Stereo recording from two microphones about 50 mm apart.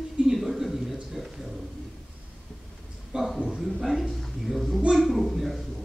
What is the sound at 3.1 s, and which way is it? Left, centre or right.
Speech, centre.